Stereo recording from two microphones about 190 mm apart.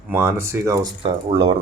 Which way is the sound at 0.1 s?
10° right (ahead or behind).